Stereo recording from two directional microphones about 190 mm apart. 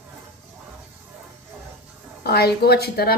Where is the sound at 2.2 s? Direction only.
55° left (ahead or behind).